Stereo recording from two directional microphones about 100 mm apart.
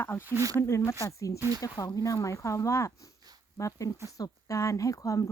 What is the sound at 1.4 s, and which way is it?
Speech, 30° right (ahead or behind).